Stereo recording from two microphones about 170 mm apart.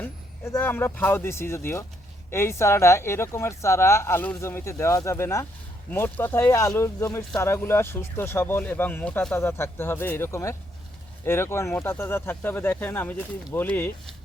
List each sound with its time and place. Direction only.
0.0 s speech: 10° left (ahead or behind)